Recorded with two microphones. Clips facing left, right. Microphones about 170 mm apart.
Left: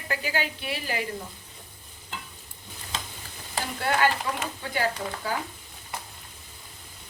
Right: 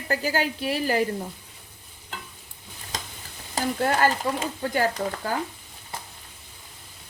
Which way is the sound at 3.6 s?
40° right (ahead or behind).